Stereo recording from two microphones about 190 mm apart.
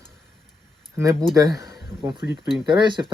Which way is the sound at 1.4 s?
20° right (ahead or behind).